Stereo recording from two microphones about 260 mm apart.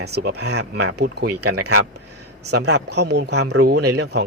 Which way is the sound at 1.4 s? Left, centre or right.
Right.